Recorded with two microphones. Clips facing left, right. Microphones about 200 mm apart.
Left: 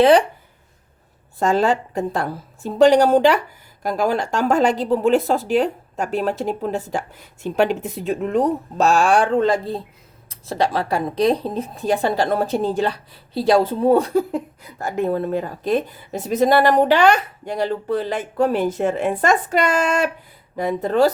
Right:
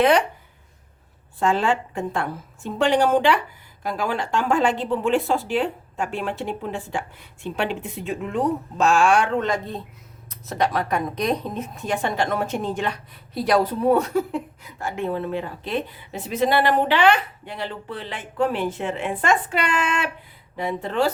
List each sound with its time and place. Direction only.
0.0 s speech: 30° left (ahead or behind)
1.4 s speech: 40° left (ahead or behind)